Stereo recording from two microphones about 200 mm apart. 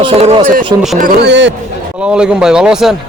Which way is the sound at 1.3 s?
60° right (ahead or behind).